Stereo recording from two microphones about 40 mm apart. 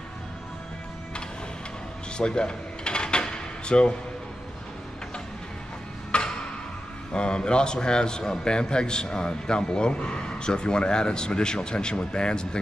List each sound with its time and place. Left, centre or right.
2.1 s drawer open or close: left
6.1 s music: left
7.2 s a man's voice: left